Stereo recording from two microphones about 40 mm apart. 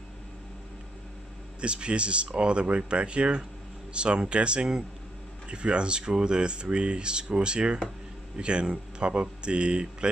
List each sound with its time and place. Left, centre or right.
1.6 s speech: right